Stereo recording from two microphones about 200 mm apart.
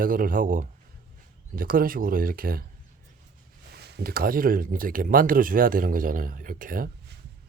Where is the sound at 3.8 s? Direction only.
55° right (ahead or behind).